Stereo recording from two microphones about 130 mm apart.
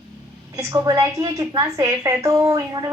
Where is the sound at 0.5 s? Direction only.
30° right (ahead or behind).